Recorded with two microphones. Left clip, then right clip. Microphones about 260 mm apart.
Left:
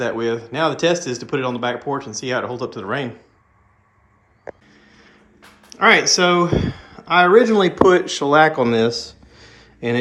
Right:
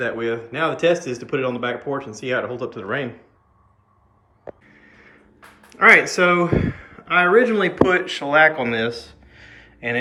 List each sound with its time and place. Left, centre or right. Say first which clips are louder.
0.0 s speech: left 2 dB; centre
4.9 s a sound: right 1 dB; centre
7.9 s speech: left 5 dB; centre